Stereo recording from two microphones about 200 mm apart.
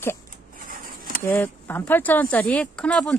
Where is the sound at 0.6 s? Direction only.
45° right (ahead or behind).